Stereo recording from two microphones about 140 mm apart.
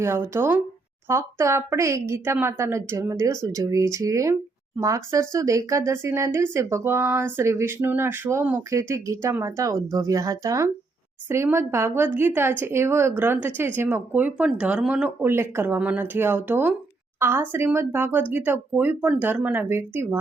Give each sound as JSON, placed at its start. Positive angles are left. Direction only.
{"t": 0.0, "sound": "speech", "side_deg": -15}